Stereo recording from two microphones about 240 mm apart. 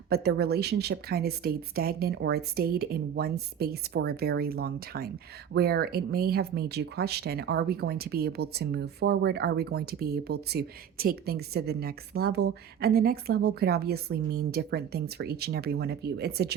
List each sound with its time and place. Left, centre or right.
0.1 s speech: right